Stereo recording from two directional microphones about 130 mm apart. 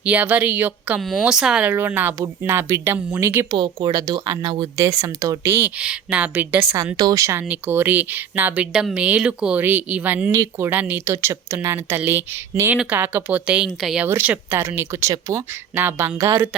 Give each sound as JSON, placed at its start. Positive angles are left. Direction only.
{"t": 0.0, "sound": "speech", "side_deg": -10}
{"t": 1.0, "sound": "a woman's voice", "side_deg": 0}
{"t": 3.5, "sound": "speech", "side_deg": -35}
{"t": 4.8, "sound": "a woman's voice", "side_deg": -25}
{"t": 14.1, "sound": "a woman's voice", "side_deg": -15}